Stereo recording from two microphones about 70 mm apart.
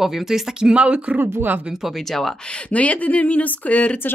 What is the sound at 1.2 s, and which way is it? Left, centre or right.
Speech, right.